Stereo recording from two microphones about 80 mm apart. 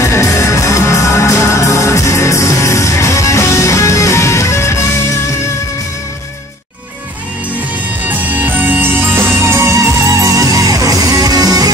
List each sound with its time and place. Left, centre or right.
0.0 s music: left
8.1 s music: right